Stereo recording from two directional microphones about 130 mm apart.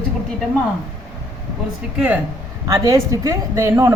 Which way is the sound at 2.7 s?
25° right (ahead or behind).